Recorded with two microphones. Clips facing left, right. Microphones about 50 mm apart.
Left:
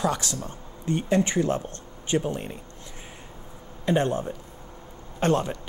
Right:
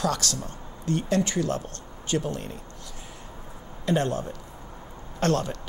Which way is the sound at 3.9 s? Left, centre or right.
Left.